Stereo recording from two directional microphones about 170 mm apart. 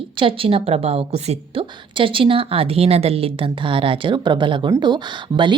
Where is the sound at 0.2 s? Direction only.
30° right (ahead or behind).